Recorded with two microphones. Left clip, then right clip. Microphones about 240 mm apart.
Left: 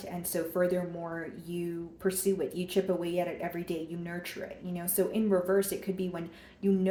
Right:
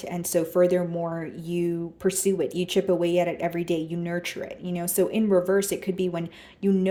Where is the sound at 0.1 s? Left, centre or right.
Right.